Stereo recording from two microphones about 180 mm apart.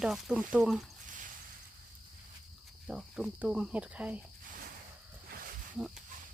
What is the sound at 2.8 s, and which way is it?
Speech, 5° right (ahead or behind).